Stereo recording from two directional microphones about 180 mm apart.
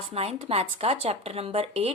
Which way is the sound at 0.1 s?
35° right (ahead or behind).